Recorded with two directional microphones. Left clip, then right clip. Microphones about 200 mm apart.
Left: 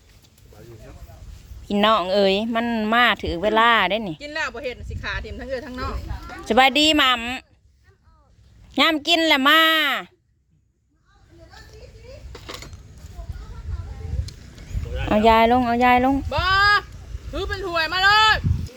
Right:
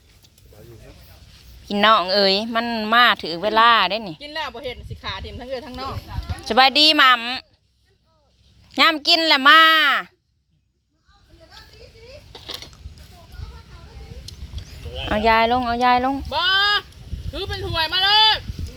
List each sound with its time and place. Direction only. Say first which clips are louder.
1.6 s speech: right 3 dB; 10° left (ahead or behind)
4.2 s speech: left 1 dB; 5° right (ahead or behind)
6.1 s speech: left 1 dB; 15° left (ahead or behind)
8.7 s speech: right 2 dB; 15° left (ahead or behind)
12.3 s a sound: right 3 dB; 5° left (ahead or behind)
15.0 s speech: left 1 dB; 20° left (ahead or behind)
16.3 s speech: even; centre (ahead or behind)